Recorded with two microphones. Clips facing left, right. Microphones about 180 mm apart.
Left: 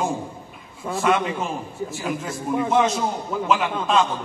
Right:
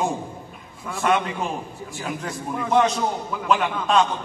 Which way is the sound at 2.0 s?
Centre (ahead or behind).